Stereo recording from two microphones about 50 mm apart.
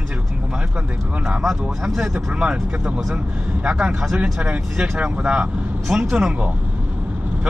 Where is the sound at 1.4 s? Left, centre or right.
Centre.